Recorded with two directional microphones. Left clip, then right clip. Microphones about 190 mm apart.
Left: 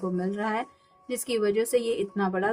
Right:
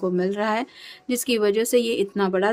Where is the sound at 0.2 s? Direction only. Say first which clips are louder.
Right 4 dB; 40° right (ahead or behind).